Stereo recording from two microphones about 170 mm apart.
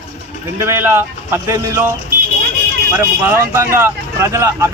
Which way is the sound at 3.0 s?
15° right (ahead or behind).